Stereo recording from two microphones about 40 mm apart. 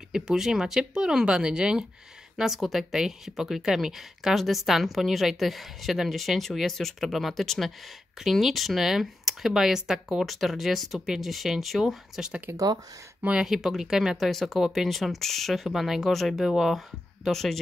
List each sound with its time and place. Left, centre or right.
0.1 s speech: centre
2.6 s a woman's voice: centre
2.9 s a woman's voice: centre
10.2 s a woman's voice: centre
13.5 s speech: centre
14.1 s a woman's voice: centre
17.2 s speech: centre